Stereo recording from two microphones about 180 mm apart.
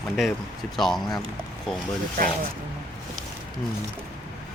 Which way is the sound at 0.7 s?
Centre (ahead or behind).